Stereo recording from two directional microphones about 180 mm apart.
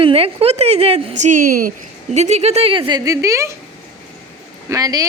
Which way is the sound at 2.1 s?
40° right (ahead or behind).